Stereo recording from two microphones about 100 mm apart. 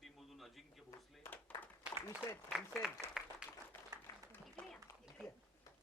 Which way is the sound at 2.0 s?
30° left (ahead or behind).